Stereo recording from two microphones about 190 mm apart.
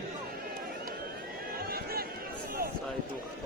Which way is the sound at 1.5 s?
55° right (ahead or behind).